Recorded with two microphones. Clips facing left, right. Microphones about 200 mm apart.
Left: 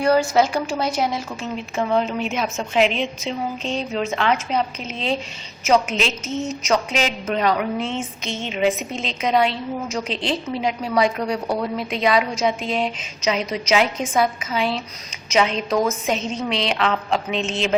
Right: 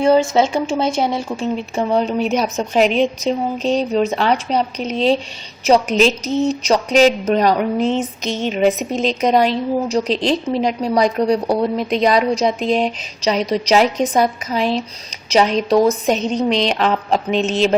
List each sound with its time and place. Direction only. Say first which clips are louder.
0.0 s a woman's voice: right 4 dB; 25° right (ahead or behind)